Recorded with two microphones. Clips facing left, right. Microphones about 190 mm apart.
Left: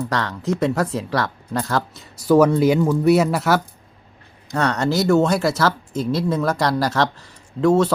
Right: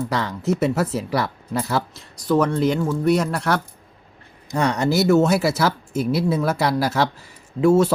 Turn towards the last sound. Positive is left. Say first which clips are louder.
# right 1 dB
turn(degrees=-10)  # may be behind; listen again after turning